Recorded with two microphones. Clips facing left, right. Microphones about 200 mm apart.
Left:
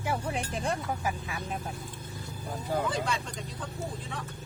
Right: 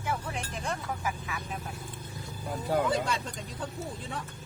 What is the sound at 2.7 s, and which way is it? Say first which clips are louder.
Speech: right 3 dB; 65° right (ahead or behind).